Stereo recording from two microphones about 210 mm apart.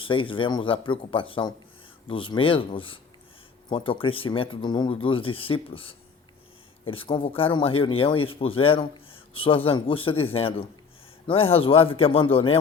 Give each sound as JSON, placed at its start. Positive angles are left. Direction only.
{"t": 0.0, "sound": "speech", "side_deg": 25}